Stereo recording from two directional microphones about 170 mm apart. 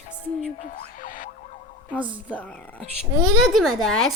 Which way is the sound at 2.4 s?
10° left (ahead or behind).